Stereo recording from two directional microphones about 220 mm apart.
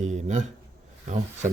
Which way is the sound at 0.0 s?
30° right (ahead or behind).